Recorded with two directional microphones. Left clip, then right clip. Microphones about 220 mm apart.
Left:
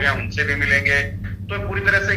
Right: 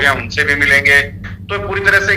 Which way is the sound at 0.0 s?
35° right (ahead or behind).